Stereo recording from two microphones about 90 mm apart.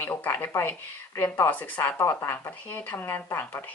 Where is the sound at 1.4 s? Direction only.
15° left (ahead or behind).